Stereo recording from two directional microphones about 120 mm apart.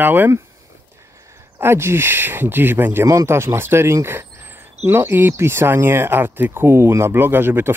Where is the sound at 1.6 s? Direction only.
20° right (ahead or behind).